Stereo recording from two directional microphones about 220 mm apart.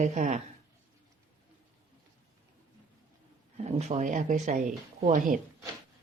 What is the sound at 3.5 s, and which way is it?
Speech, 30° right (ahead or behind).